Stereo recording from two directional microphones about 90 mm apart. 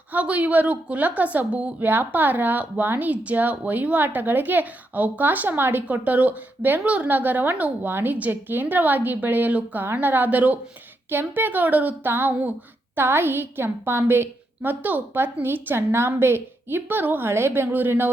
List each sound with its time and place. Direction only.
0.1 s a woman's voice: 15° right (ahead or behind)